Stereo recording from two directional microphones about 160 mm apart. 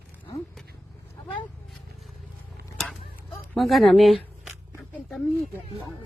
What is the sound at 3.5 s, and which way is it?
Speech, centre (ahead or behind).